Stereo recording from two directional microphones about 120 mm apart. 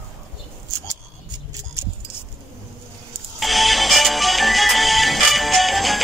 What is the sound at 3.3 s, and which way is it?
Music, centre (ahead or behind).